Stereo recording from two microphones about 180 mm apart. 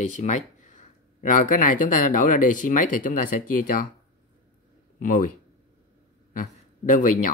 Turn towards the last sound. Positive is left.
turn(degrees=45)  # may be behind; listen again after turning